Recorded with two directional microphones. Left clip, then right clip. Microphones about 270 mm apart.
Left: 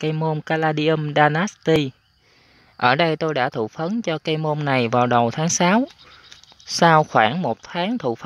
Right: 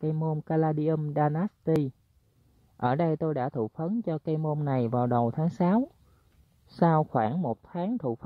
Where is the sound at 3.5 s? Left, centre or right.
Centre.